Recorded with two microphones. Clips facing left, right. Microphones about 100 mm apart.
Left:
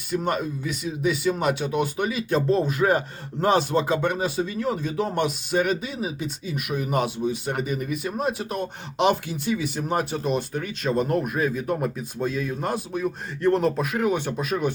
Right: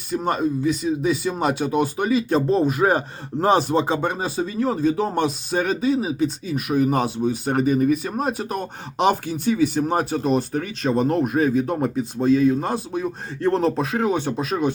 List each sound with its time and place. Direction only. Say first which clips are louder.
0.1 s speech: right 4 dB; 35° right (ahead or behind)